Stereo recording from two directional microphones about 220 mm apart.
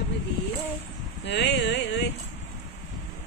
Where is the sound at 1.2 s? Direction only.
50° left (ahead or behind).